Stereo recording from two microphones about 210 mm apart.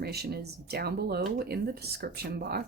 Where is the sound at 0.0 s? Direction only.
50° right (ahead or behind).